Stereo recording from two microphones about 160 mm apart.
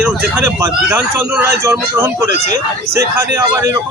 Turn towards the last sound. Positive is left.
turn(degrees=-20)  # may be behind; listen again after turning